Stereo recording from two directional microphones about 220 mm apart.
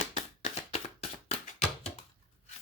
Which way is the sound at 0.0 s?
35° left (ahead or behind).